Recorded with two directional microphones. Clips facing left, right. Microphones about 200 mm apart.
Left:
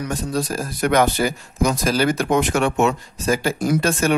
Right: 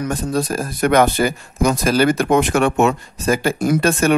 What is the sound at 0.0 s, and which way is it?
Speech, 55° right (ahead or behind).